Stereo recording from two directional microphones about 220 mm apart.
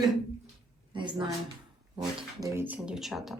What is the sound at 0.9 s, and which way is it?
Speech, 20° right (ahead or behind).